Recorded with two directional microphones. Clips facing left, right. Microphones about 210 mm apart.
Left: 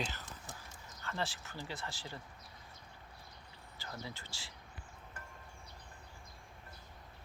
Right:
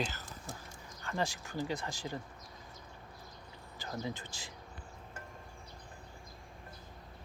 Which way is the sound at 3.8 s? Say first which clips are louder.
Right 7 dB; 20° right (ahead or behind).